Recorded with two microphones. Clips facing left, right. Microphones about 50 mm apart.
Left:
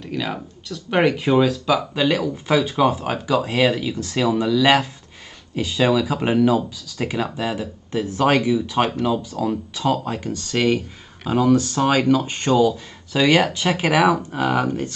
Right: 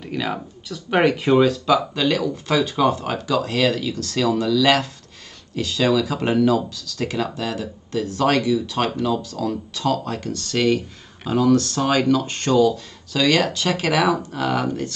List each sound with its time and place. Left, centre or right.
0.0 s speech: centre
2.0 s speech: centre